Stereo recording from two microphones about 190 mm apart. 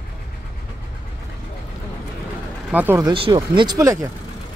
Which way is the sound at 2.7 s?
10° right (ahead or behind).